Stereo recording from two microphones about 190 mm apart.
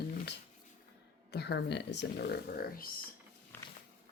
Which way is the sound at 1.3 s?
60° left (ahead or behind).